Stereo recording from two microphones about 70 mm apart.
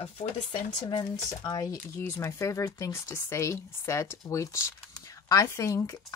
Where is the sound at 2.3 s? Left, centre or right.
Left.